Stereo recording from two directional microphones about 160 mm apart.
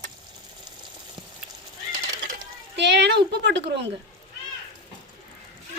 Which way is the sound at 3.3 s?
90° right.